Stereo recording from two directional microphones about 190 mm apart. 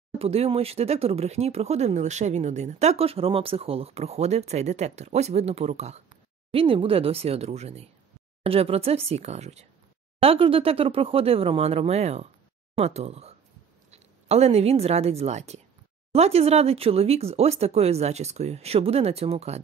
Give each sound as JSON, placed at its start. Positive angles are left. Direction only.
{"t": 0.2, "sound": "a woman's voice", "side_deg": -30}